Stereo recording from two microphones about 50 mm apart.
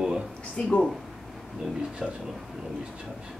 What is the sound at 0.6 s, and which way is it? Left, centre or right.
Speech, centre.